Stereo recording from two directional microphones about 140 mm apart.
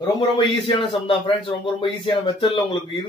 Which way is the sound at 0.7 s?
40° left (ahead or behind).